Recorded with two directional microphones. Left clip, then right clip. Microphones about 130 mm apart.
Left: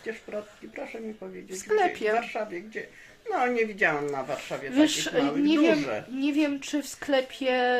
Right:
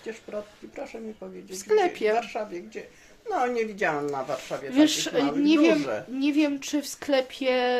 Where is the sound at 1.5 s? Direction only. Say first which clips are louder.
Right 2 dB; 20° right (ahead or behind).